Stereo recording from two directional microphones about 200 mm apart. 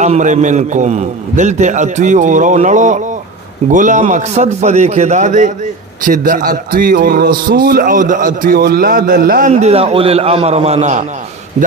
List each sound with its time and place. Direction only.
0.0 s a man's voice: 35° right (ahead or behind)